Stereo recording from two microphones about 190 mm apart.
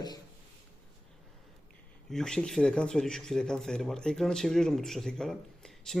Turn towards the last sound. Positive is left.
turn(degrees=5)  # may be behind; listen again after turning